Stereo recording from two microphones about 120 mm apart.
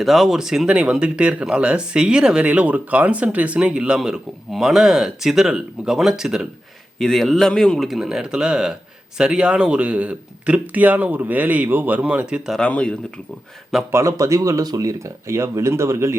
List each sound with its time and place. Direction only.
0.0 s speech: centre (ahead or behind)
12.5 s speech: 10° left (ahead or behind)
13.9 s speech: 25° right (ahead or behind)